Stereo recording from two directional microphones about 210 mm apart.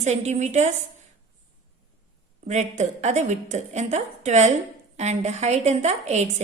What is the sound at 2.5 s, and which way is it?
A woman's voice, 35° right (ahead or behind).